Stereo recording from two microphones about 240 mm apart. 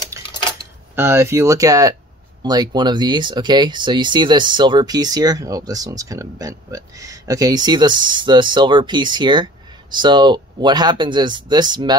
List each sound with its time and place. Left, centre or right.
0.9 s speech: centre